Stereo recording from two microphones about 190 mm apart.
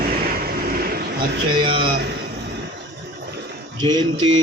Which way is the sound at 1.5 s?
25° right (ahead or behind).